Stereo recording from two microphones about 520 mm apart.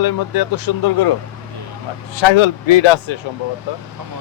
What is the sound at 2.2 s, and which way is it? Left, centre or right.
Speech, left.